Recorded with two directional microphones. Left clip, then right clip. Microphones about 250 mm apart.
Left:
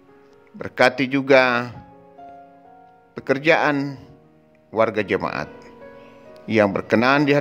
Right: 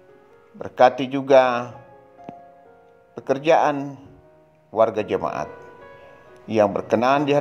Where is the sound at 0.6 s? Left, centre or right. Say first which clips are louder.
Right 1 dB; left.